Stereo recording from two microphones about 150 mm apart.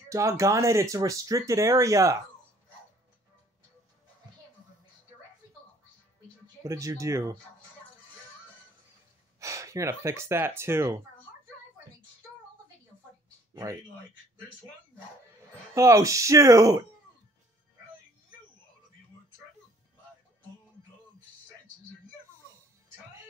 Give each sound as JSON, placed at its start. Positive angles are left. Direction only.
{"t": 0.1, "sound": "speech", "side_deg": -20}
{"t": 6.6, "sound": "speech", "side_deg": -20}
{"t": 9.4, "sound": "speech", "side_deg": -20}
{"t": 15.7, "sound": "speech", "side_deg": -20}